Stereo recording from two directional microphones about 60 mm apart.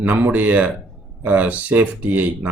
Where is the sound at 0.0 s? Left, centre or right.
Right.